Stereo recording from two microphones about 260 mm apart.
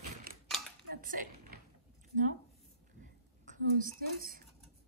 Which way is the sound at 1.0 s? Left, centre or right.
Right.